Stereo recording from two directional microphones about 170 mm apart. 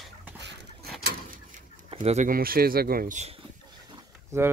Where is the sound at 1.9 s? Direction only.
40° right (ahead or behind).